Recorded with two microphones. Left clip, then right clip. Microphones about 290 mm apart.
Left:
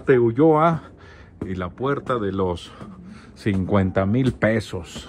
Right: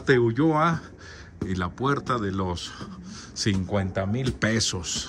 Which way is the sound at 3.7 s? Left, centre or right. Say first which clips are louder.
Left 7 dB; centre.